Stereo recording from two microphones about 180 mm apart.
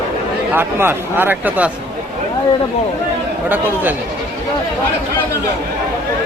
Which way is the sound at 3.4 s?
10° right (ahead or behind).